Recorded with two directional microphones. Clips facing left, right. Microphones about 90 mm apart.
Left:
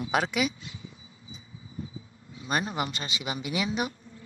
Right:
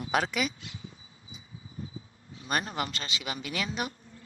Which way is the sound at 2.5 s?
10° left (ahead or behind).